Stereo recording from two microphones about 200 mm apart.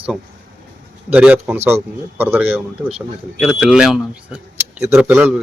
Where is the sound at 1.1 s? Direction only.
5° right (ahead or behind).